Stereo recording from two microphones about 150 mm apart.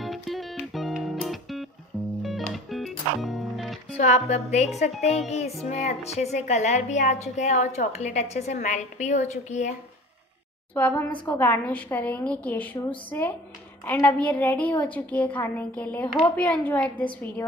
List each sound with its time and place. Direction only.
0.0 s music: centre (ahead or behind)
3.9 s speech: 45° left (ahead or behind)
10.7 s a woman's voice: 10° left (ahead or behind)